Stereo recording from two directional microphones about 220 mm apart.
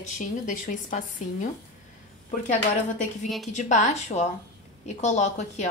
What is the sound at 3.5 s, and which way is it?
A woman's voice, 35° left (ahead or behind).